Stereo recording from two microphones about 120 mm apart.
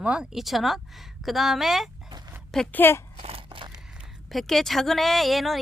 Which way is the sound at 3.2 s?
55° right (ahead or behind).